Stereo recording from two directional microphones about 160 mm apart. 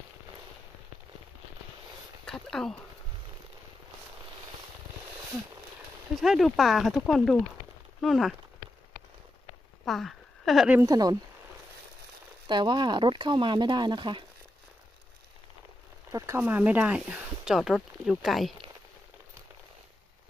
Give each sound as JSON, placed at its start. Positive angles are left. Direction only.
{"t": 2.2, "sound": "speech", "side_deg": 5}
{"t": 6.2, "sound": "speech", "side_deg": 0}
{"t": 9.8, "sound": "speech", "side_deg": 0}
{"t": 10.8, "sound": "speech", "side_deg": -25}
{"t": 12.4, "sound": "speech", "side_deg": -30}
{"t": 16.1, "sound": "speech", "side_deg": -20}